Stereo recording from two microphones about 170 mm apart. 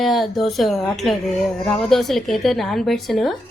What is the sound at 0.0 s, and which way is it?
A woman's voice, centre (ahead or behind).